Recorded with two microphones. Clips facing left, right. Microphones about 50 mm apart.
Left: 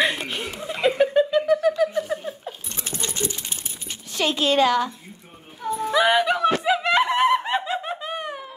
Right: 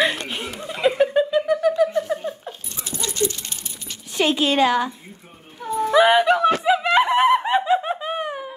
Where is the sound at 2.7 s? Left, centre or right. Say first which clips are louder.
Right 1 dB; left.